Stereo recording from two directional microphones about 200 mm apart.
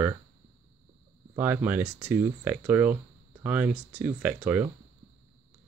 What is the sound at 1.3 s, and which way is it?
Speech, 10° right (ahead or behind).